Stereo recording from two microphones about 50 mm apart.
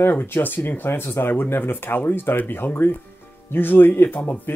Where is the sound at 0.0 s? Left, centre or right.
Left.